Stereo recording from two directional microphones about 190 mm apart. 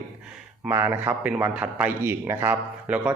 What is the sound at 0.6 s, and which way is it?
A man's voice, 10° right (ahead or behind).